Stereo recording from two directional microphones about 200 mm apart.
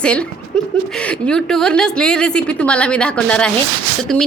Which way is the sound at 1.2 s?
5° left (ahead or behind).